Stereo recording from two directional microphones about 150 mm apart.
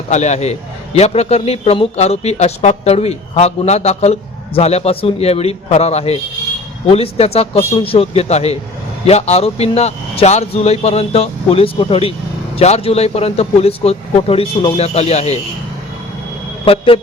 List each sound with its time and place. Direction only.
0.1 s speech: 50° left (ahead or behind)
16.6 s speech: 40° left (ahead or behind)